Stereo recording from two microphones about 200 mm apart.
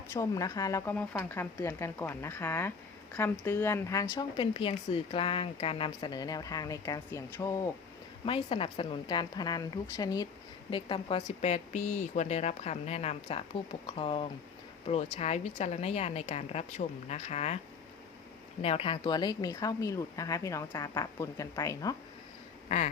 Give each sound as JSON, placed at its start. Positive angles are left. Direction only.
{"t": 0.1, "sound": "a woman's voice", "side_deg": 15}
{"t": 18.6, "sound": "a woman's voice", "side_deg": 30}
{"t": 22.7, "sound": "a woman's voice", "side_deg": 35}